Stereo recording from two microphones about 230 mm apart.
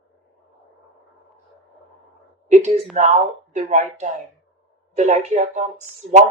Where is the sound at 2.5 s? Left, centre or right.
Right.